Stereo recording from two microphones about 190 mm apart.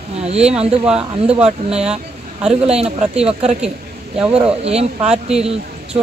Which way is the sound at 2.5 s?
35° right (ahead or behind).